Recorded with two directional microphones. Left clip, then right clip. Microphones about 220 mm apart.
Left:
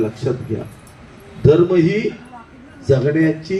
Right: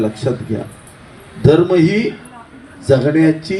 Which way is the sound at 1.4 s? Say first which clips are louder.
Right 2 dB; 55° right (ahead or behind).